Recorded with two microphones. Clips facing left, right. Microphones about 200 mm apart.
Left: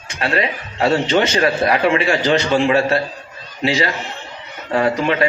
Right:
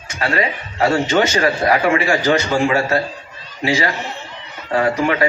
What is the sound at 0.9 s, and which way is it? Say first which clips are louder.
A man's voice: left 1 dB; 25° left (ahead or behind).